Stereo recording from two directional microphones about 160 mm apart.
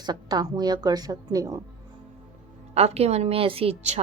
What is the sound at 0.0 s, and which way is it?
Speech, 25° right (ahead or behind).